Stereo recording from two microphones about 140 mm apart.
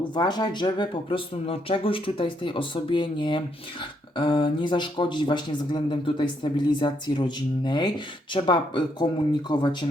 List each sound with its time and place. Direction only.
0.1 s speech: 30° left (ahead or behind)